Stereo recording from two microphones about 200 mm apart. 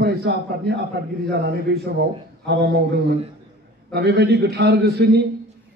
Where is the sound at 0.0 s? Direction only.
55° right (ahead or behind).